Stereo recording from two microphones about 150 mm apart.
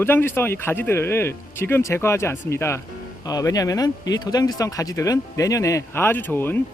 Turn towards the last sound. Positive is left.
turn(degrees=15)  # may be behind; listen again after turning